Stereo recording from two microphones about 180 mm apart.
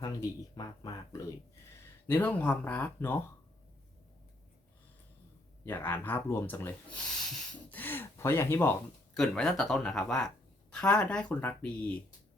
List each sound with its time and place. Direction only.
0.0 s speech: 20° left (ahead or behind)
2.0 s speech: 10° left (ahead or behind)
5.6 s speech: 10° left (ahead or behind)